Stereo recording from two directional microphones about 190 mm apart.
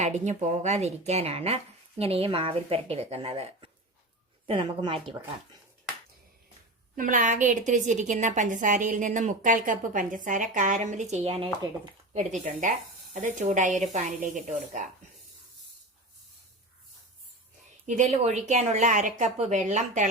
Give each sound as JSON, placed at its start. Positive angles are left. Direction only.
{"t": 0.0, "sound": "a woman's voice", "side_deg": -35}
{"t": 6.9, "sound": "a woman's voice", "side_deg": -45}
{"t": 17.8, "sound": "a woman's voice", "side_deg": -40}